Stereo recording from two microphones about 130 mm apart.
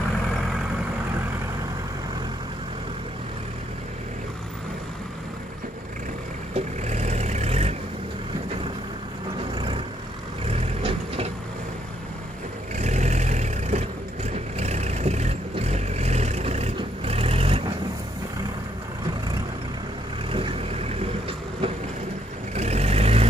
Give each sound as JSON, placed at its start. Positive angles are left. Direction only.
{"t": 6.5, "sound": "vehicle", "side_deg": -60}
{"t": 9.6, "sound": "vehicle", "side_deg": -40}
{"t": 12.7, "sound": "vehicle", "side_deg": -65}
{"t": 20.3, "sound": "vehicle", "side_deg": -45}